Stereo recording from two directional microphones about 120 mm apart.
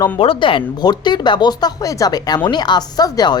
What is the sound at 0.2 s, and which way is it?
Speech, 45° left (ahead or behind).